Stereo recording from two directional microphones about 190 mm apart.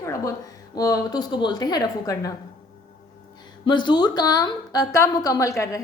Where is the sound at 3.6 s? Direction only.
25° left (ahead or behind).